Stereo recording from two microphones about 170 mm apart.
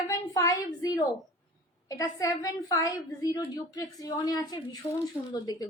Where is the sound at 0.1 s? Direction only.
20° left (ahead or behind).